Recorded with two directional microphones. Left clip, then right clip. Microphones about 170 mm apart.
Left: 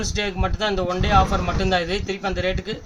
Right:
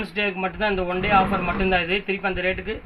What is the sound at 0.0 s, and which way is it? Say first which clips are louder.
A man's voice: even; 20° left (ahead or behind).